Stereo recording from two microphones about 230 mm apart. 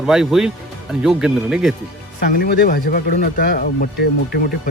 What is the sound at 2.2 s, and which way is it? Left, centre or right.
Speech, left.